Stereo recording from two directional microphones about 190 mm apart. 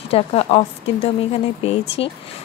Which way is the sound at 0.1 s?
30° left (ahead or behind).